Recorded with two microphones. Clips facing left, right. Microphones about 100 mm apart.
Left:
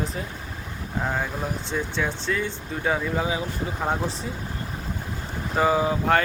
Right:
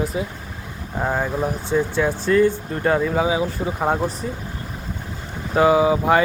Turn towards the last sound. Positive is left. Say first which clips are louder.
# right 5 dB
turn(degrees=-10)  # may be behind; listen again after turning